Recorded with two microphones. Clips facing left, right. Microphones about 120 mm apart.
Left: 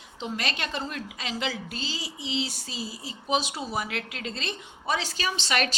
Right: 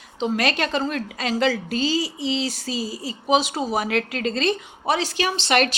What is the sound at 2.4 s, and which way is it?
A woman's voice, 90° right.